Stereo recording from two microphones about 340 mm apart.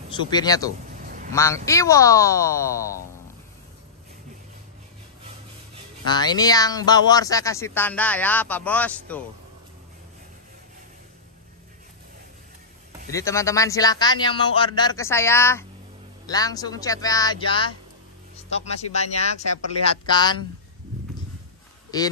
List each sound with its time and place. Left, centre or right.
0.3 s speech: centre
1.0 s a sound: right
1.3 s speech: centre
6.0 s speech: centre
13.1 s speech: centre